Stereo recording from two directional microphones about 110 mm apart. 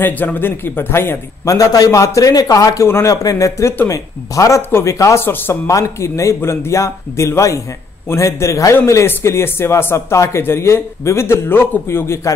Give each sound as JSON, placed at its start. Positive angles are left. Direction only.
{"t": 0.0, "sound": "a man's voice", "side_deg": 15}